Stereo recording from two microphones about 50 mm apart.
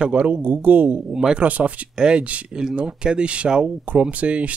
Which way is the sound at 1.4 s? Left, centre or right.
Right.